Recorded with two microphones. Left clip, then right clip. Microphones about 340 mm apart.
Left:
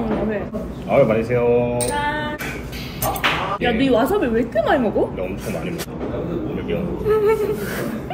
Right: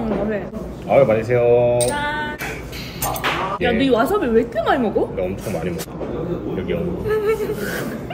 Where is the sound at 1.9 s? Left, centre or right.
Centre.